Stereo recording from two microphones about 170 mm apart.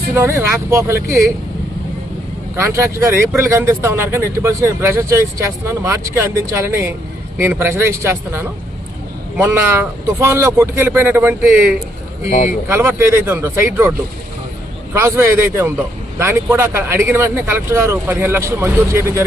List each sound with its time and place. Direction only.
0.1 s speech: 15° right (ahead or behind)
2.6 s speech: 15° right (ahead or behind)
14.9 s speech: 15° right (ahead or behind)